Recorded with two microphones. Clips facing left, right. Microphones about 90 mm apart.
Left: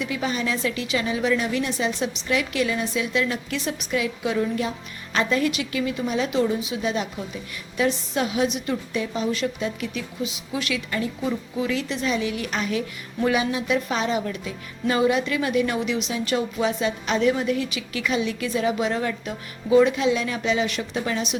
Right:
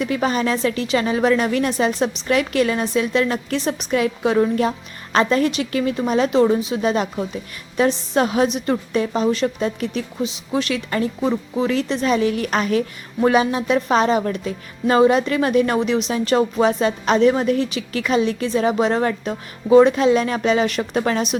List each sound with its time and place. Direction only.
0.0 s a woman's voice: 45° right (ahead or behind)